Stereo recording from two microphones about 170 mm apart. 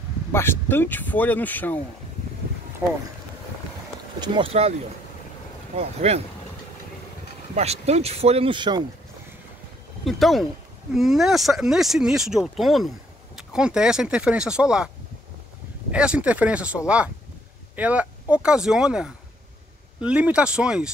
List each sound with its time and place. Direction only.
0.3 s speech: 15° left (ahead or behind)
4.2 s speech: 35° right (ahead or behind)
5.8 s speech: 40° right (ahead or behind)
7.5 s speech: 40° right (ahead or behind)
10.0 s speech: centre (ahead or behind)
15.9 s speech: 5° right (ahead or behind)